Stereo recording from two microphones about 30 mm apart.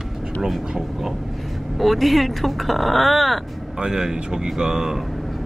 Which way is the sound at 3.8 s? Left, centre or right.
Centre.